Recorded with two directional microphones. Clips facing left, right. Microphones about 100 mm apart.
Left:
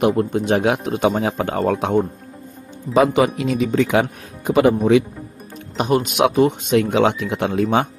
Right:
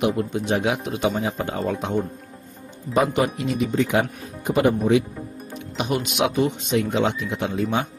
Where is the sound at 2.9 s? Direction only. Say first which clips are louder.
Left 5 dB; 90° left.